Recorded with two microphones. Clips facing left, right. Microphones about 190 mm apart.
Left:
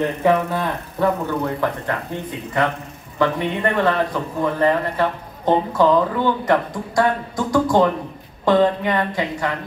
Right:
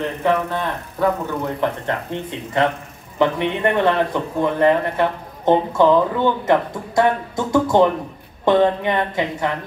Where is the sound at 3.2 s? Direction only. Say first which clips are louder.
Right 2 dB; 20° right (ahead or behind).